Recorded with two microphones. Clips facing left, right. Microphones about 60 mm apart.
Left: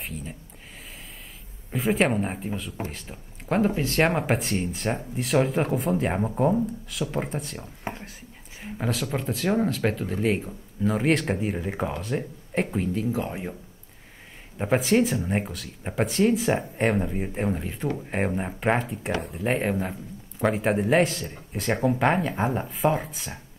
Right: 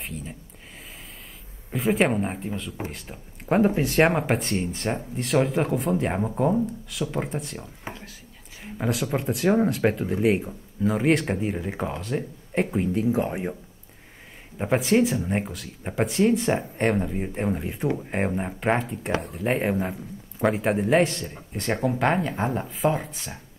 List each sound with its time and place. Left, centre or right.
1.7 s speech: centre
3.4 s speech: centre
4.0 s speech: centre
7.8 s a sound: left
8.6 s a sound: centre
9.1 s speech: centre
13.1 s speech: right
14.6 s speech: centre